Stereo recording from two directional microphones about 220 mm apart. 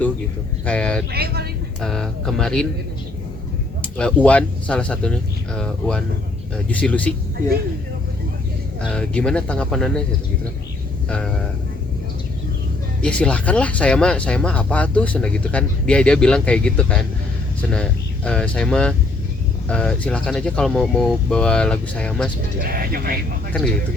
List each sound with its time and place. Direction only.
0.6 s speech: 5° left (ahead or behind)
1.1 s speech: 45° right (ahead or behind)
1.8 s speech: centre (ahead or behind)
3.9 s speech: 5° left (ahead or behind)
6.7 s speech: 5° left (ahead or behind)
8.9 s speech: 5° left (ahead or behind)
11.1 s speech: 5° left (ahead or behind)
13.0 s speech: 5° left (ahead or behind)
22.6 s speech: 45° right (ahead or behind)